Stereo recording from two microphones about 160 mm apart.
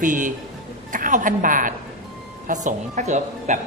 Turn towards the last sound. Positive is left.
turn(degrees=-50)  # may be behind; listen again after turning